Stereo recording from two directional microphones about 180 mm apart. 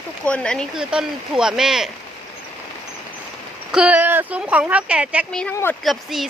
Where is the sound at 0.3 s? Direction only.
5° left (ahead or behind).